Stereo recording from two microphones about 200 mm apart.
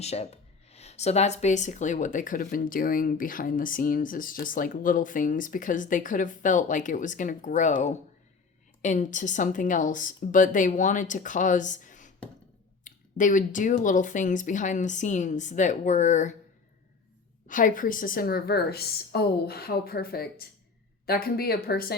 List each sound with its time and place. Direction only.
0.0 s speech: 30° left (ahead or behind)
17.5 s a woman's voice: 40° left (ahead or behind)